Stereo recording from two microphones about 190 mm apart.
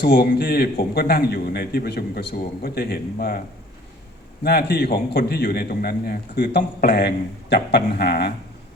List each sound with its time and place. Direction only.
0.0 s a man's voice: 50° left (ahead or behind)
4.4 s a man's voice: 55° left (ahead or behind)